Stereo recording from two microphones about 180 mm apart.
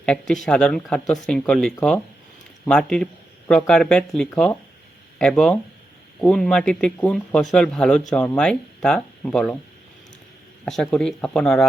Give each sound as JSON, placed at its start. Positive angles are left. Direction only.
{"t": 0.0, "sound": "speech", "side_deg": 5}
{"t": 10.7, "sound": "speech", "side_deg": 5}